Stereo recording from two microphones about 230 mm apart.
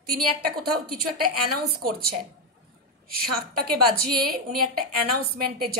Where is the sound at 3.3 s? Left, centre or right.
Right.